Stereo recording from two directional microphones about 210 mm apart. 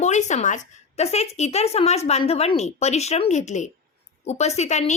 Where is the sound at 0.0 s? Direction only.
35° left (ahead or behind).